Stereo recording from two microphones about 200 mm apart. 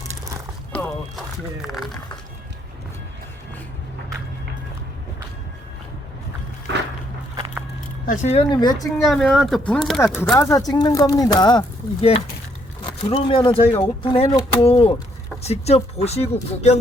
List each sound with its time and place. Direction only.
1.6 s speech: centre (ahead or behind)
6.7 s a sound: 60° right (ahead or behind)
8.0 s speech: 40° left (ahead or behind)
8.3 s speech: 25° left (ahead or behind)
9.0 s speech: centre (ahead or behind)
10.3 s speech: 15° left (ahead or behind); by 16.8 s 35° left (ahead or behind)